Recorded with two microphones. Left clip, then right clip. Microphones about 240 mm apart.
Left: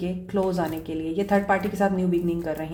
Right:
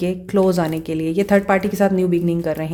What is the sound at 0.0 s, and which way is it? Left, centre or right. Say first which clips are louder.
Speech: right 8 dB; right.